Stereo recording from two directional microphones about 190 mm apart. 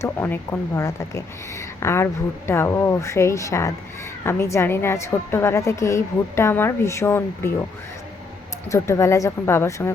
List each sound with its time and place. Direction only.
0.0 s a woman's voice: 10° left (ahead or behind)
8.7 s a woman's voice: 15° left (ahead or behind)